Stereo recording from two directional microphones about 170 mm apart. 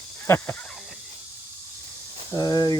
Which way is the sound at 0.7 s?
Centre (ahead or behind).